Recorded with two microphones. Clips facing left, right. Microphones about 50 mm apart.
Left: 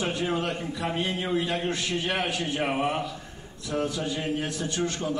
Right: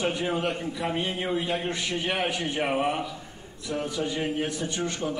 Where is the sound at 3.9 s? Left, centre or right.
Right.